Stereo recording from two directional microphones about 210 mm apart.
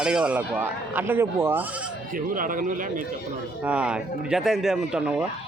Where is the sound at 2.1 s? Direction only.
40° right (ahead or behind).